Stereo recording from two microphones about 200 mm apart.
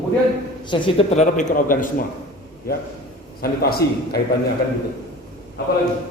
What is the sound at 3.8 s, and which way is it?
Speech, 15° left (ahead or behind).